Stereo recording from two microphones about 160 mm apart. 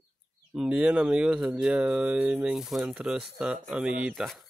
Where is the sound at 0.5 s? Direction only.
5° right (ahead or behind).